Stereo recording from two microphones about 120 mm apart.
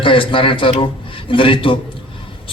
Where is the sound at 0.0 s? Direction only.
45° left (ahead or behind).